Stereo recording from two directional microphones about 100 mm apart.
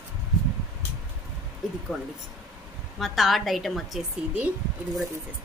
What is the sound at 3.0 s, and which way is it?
A woman's voice, centre (ahead or behind).